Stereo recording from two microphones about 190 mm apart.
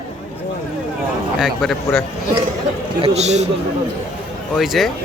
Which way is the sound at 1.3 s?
Centre (ahead or behind).